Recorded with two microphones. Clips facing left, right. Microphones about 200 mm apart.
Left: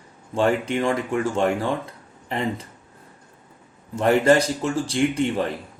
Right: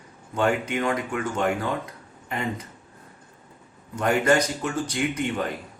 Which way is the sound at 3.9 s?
30° left (ahead or behind).